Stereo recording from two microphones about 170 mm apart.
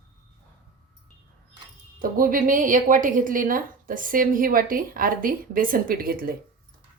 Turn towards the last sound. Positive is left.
turn(degrees=-60)  # may be behind; listen again after turning